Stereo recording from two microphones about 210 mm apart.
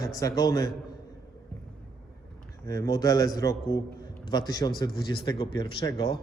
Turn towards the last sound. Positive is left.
turn(degrees=20)  # may be behind; listen again after turning